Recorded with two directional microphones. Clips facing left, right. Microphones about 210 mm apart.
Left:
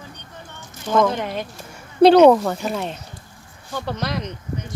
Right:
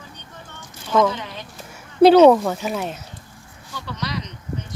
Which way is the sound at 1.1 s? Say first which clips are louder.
Left 8 dB; 55° left (ahead or behind).